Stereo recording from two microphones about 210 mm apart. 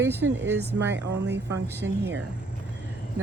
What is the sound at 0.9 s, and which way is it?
Speech, 55° right (ahead or behind).